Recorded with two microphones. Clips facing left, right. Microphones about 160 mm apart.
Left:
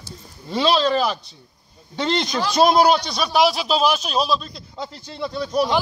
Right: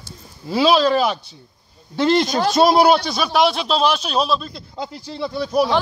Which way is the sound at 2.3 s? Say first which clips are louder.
Right 4 dB; 45° right (ahead or behind).